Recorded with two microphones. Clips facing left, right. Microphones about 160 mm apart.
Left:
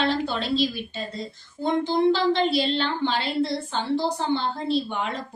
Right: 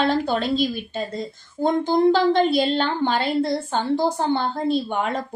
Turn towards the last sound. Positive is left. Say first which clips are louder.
# right 3 dB
turn(degrees=-50)  # may be behind; listen again after turning